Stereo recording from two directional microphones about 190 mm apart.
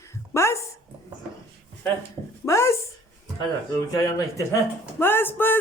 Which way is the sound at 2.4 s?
15° left (ahead or behind).